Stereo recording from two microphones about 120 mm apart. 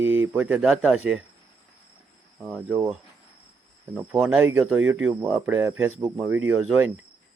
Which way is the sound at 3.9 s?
10° right (ahead or behind).